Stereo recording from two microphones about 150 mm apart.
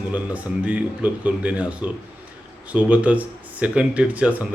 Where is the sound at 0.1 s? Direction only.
10° right (ahead or behind).